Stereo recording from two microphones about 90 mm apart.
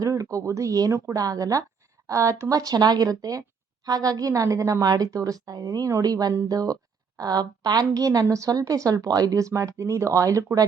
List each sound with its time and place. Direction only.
0.0 s a woman's voice: 40° right (ahead or behind)